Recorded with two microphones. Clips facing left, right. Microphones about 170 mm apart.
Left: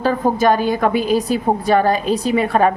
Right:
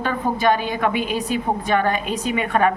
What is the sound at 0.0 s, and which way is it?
A woman's voice, 40° left (ahead or behind).